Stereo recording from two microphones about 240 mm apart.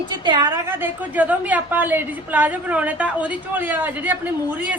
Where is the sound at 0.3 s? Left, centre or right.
Centre.